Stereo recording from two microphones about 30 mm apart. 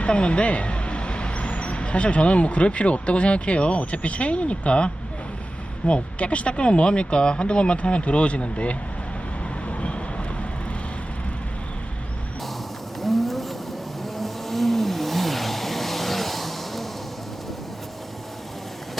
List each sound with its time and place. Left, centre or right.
0.0 s speech: left
9.6 s vehicle: left
13.0 s a sound: centre
14.0 s vehicle: centre